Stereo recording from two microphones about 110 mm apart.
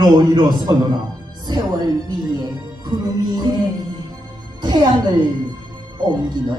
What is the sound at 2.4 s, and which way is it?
A man's voice, 40° right (ahead or behind).